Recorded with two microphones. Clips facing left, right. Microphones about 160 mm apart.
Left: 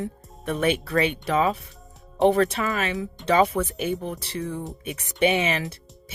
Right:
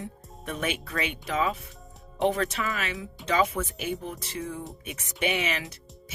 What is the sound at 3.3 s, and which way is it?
Speech, 65° left (ahead or behind).